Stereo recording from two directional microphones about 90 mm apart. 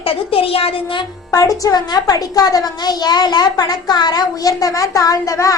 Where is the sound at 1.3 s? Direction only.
40° left (ahead or behind).